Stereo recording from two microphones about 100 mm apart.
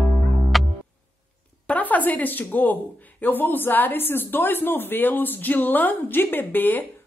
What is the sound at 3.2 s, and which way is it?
A woman's voice, 20° left (ahead or behind).